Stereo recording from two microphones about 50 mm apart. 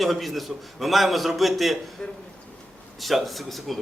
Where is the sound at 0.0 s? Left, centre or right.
Centre.